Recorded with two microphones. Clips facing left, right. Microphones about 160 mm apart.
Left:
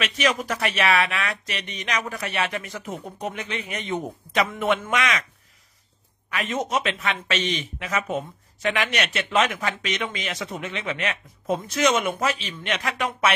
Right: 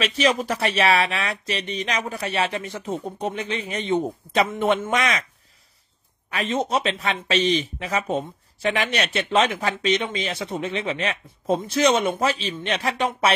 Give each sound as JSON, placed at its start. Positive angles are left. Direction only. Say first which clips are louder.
{"t": 0.0, "sound": "speech", "louder": "right 3 dB", "side_deg": -30}
{"t": 6.3, "sound": "speech", "louder": "right 2 dB", "side_deg": -30}